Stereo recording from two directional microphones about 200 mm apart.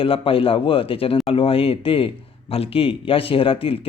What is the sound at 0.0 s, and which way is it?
Speech, 25° left (ahead or behind).